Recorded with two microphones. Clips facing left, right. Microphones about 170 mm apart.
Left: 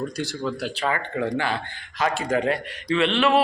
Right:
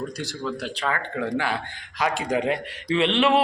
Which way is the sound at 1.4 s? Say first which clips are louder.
Left 1 dB; 10° right (ahead or behind).